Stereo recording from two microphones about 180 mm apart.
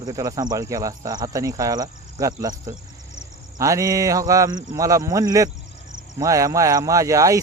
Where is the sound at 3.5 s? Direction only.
20° right (ahead or behind).